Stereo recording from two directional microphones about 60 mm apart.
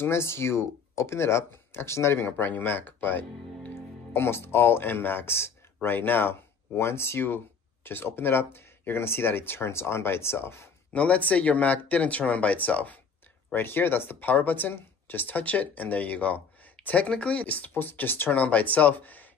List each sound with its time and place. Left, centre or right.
0.0 s speech: left
10.9 s speech: left
18.3 s speech: left